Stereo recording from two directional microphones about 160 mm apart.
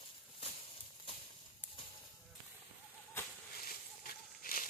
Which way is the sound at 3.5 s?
70° left (ahead or behind).